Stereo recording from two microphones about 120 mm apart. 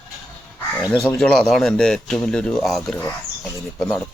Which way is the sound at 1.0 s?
5° left (ahead or behind).